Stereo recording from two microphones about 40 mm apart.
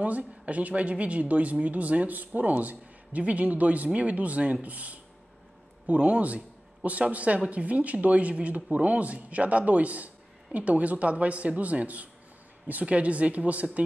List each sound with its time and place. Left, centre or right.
0.0 s speech: right